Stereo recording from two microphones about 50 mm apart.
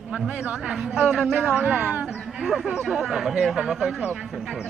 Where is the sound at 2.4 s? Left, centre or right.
Centre.